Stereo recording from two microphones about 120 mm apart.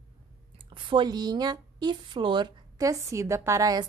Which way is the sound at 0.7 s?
40° right (ahead or behind).